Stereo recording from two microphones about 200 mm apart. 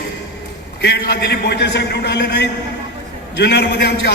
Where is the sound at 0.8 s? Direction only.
55° left (ahead or behind).